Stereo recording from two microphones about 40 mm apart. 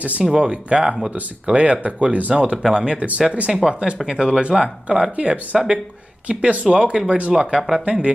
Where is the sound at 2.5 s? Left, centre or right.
Centre.